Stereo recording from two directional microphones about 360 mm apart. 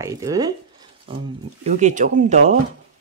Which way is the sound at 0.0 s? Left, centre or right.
Centre.